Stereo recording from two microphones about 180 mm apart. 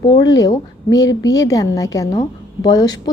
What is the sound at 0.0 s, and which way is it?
A woman's voice, 25° left (ahead or behind).